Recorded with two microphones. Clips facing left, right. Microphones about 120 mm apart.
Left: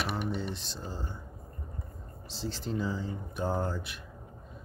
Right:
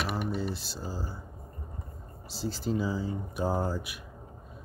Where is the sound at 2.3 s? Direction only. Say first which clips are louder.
Right 4 dB; 5° right (ahead or behind).